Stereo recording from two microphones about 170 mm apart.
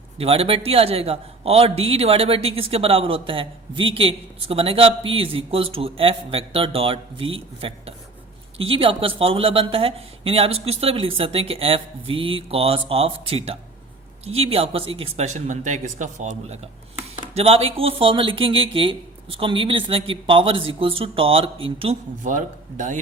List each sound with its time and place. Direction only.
0.2 s a man's voice: 35° right (ahead or behind)
22.2 s speech: 50° right (ahead or behind)